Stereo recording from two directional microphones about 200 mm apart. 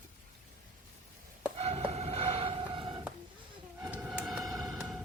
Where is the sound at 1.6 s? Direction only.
30° right (ahead or behind).